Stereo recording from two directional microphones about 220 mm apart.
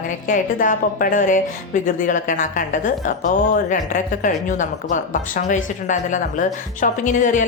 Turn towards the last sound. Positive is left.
turn(degrees=35)  # may be behind; listen again after turning